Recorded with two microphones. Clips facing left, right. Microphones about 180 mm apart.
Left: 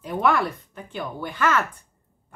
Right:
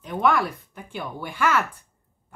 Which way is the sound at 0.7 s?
10° right (ahead or behind).